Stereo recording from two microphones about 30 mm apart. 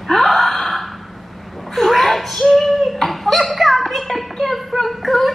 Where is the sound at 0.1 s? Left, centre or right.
Centre.